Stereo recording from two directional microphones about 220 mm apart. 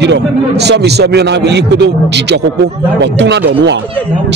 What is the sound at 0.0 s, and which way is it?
A man's voice, 50° right (ahead or behind).